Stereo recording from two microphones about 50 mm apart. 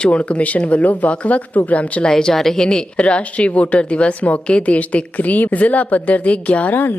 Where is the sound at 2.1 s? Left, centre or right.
Centre.